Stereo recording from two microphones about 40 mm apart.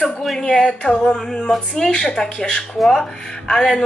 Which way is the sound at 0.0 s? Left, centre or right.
Centre.